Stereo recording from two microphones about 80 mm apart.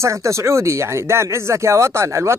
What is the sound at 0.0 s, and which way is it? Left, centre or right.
Speech, right.